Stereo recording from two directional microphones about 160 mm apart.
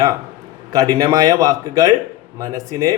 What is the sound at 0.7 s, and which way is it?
Speech, 25° right (ahead or behind).